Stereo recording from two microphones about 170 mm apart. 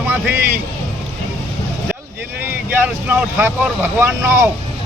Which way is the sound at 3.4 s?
15° right (ahead or behind).